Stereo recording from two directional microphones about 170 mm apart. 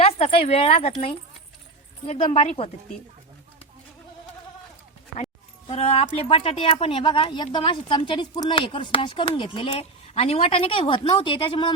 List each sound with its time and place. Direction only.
0.0 s speech: 35° left (ahead or behind)
5.1 s a sound: 40° left (ahead or behind)
6.1 s speech: 35° left (ahead or behind)